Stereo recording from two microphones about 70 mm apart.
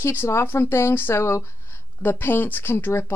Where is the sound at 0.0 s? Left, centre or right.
Left.